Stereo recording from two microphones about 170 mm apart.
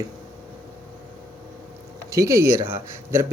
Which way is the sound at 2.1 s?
20° right (ahead or behind).